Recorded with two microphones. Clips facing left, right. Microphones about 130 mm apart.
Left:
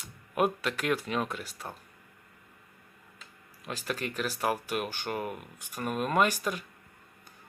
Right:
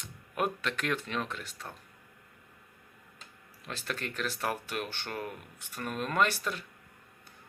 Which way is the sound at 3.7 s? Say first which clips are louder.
Left 3 dB; 10° left (ahead or behind).